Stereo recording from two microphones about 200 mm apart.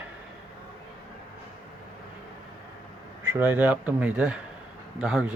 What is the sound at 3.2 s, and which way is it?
Speech, 10° right (ahead or behind).